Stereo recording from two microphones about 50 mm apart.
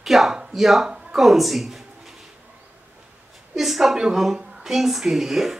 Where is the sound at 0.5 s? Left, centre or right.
Centre.